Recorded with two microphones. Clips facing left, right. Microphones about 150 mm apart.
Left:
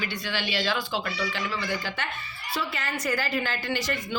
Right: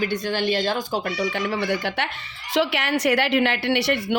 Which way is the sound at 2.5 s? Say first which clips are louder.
Right 10 dB; 85° right.